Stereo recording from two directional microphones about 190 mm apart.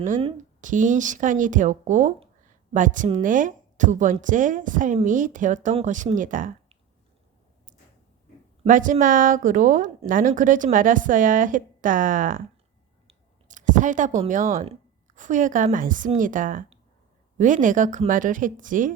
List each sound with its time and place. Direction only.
0.6 s a woman's voice: 40° right (ahead or behind)
8.6 s a woman's voice: 45° right (ahead or behind)